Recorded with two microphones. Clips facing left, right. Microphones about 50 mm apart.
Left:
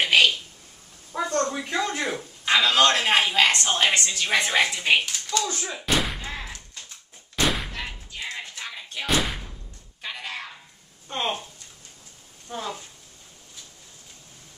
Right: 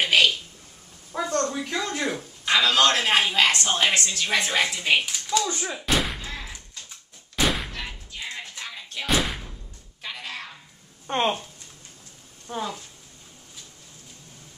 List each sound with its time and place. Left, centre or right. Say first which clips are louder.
0.0 s a sound: left 1 dB; centre
1.1 s a man's voice: even; centre
5.0 s speech: right 2 dB; centre
7.3 s music: even; centre
10.0 s a sound: left 1 dB; centre
11.1 s speech: right 5 dB; right
12.4 s speech: right 2 dB; centre